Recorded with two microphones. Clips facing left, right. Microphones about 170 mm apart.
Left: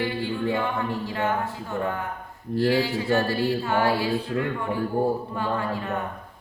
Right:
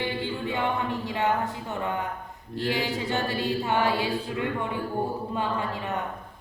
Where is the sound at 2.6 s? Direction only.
20° right (ahead or behind).